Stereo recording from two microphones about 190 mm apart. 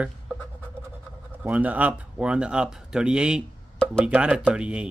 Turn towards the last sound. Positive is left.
turn(degrees=-5)  # may be behind; listen again after turning